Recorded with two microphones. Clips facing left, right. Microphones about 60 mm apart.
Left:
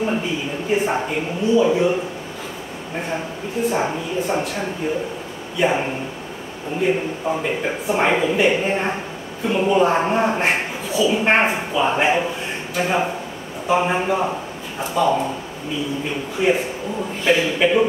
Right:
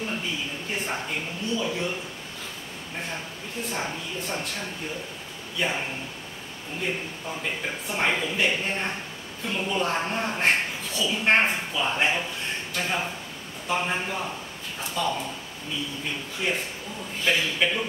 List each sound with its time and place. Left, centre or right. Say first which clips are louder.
0.2 s a woman's voice: left 7 dB; centre
3.6 s a woman's voice: left 11 dB; centre
10.4 s a man's voice: left 3 dB; centre
16.3 s a woman's voice: left 11 dB; centre